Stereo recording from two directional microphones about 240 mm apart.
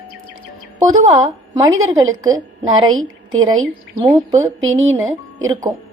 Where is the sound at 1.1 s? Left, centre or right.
Centre.